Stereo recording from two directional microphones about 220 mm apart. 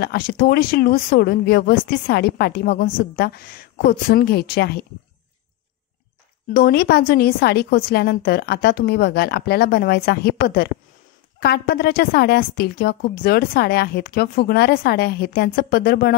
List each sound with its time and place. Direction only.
0.0 s a woman's voice: 45° left (ahead or behind)
6.5 s a woman's voice: 45° left (ahead or behind)